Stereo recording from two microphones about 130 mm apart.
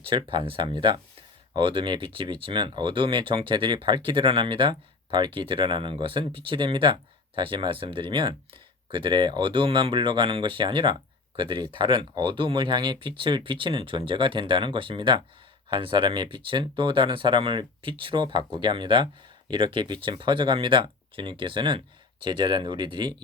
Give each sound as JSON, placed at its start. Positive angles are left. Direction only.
{"t": 0.1, "sound": "speech", "side_deg": -40}